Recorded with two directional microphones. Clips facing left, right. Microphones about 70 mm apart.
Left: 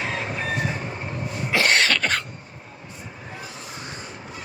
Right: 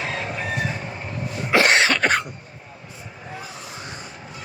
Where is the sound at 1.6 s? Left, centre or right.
Centre.